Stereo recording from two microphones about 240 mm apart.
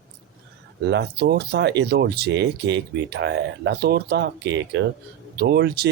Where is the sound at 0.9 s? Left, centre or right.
Right.